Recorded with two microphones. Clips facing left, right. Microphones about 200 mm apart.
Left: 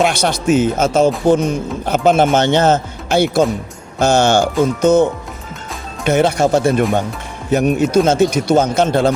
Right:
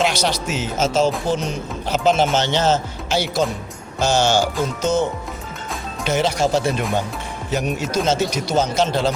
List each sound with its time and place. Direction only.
0.0 s speech: 55° left (ahead or behind)
6.1 s speech: 55° left (ahead or behind)